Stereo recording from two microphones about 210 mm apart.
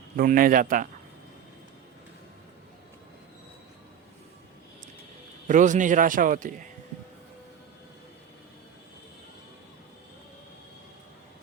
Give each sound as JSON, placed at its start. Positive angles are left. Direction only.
{"t": 0.2, "sound": "a man's voice", "side_deg": -40}
{"t": 5.5, "sound": "a man's voice", "side_deg": -35}